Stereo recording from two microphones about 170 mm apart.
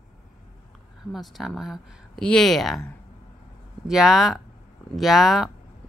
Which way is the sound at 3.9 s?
5° right (ahead or behind).